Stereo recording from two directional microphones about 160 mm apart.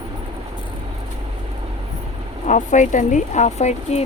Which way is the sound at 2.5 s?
50° left (ahead or behind).